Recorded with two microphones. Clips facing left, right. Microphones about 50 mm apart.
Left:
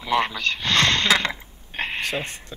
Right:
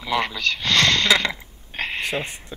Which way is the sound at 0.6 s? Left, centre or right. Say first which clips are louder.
Right 1 dB; left.